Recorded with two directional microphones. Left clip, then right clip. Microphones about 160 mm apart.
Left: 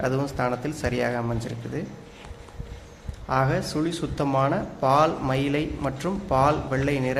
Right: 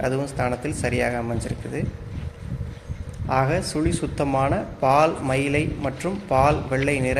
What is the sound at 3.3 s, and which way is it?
Speech, 15° right (ahead or behind).